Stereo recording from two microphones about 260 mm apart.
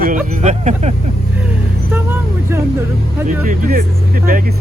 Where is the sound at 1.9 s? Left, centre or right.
Centre.